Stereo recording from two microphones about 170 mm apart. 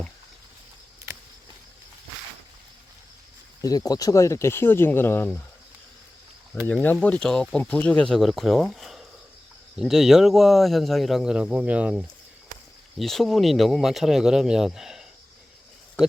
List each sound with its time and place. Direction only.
3.6 s speech: 20° left (ahead or behind)
6.7 s speech: 10° left (ahead or behind)